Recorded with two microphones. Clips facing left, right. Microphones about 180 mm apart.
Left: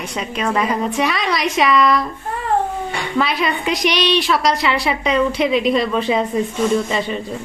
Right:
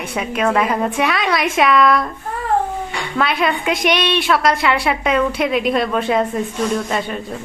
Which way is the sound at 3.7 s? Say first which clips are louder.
Even; 55° right (ahead or behind).